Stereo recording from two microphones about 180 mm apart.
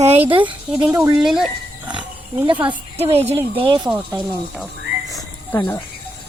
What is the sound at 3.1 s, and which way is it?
Speech, 30° right (ahead or behind).